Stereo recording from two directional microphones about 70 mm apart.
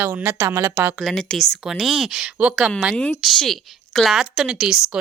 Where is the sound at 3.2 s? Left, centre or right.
Centre.